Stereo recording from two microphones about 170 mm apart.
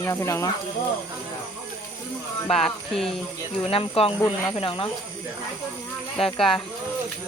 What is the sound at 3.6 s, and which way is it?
Speech, 35° left (ahead or behind).